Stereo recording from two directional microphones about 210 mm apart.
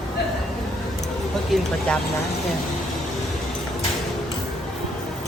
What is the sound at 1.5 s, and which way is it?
Speech, centre (ahead or behind).